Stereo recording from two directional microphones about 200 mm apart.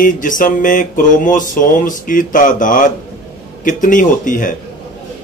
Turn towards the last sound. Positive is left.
turn(degrees=40)  # may be behind; listen again after turning